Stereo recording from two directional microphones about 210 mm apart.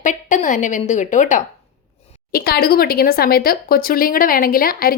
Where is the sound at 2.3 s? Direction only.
45° left (ahead or behind).